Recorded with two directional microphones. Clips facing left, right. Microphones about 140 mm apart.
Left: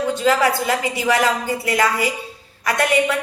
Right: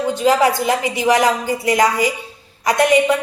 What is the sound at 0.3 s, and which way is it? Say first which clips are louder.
A woman's voice: right 3 dB; 20° right (ahead or behind).